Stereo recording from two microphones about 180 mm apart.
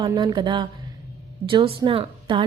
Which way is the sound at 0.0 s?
20° right (ahead or behind).